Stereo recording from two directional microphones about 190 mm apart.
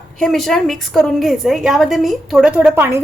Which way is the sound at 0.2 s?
Centre (ahead or behind).